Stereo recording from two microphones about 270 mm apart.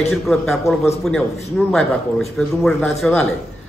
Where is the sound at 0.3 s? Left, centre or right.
Centre.